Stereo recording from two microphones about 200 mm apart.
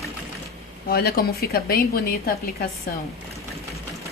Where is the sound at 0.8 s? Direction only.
50° left (ahead or behind).